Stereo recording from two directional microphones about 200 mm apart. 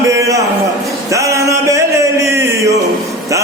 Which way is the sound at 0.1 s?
15° right (ahead or behind).